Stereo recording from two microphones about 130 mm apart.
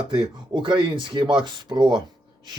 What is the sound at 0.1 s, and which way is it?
Speech, 35° right (ahead or behind).